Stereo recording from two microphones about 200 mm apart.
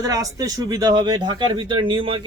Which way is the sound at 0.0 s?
20° right (ahead or behind).